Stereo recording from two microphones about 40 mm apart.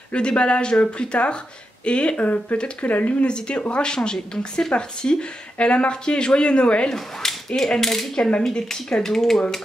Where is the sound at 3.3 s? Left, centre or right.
Left.